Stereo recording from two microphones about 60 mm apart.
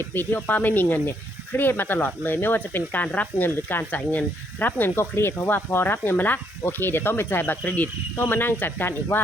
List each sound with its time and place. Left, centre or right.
0.0 s speech: left
4.9 s speech: left